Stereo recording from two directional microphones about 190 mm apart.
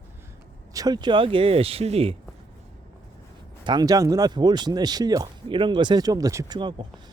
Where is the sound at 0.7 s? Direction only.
20° right (ahead or behind).